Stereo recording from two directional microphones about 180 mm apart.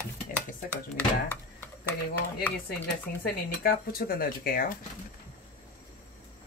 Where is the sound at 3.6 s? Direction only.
55° left (ahead or behind).